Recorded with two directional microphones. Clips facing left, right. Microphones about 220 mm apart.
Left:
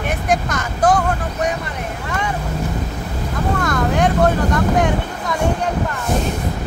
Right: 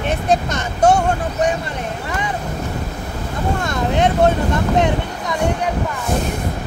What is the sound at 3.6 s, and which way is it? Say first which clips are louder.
Vehicle: left 1 dB; 25° right (ahead or behind).